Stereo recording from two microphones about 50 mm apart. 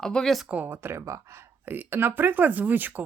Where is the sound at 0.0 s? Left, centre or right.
Centre.